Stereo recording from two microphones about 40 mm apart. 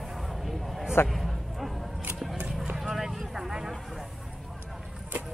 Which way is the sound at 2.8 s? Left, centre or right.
Centre.